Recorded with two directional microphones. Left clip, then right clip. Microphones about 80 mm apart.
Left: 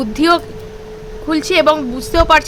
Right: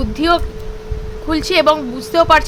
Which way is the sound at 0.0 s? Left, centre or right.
Left.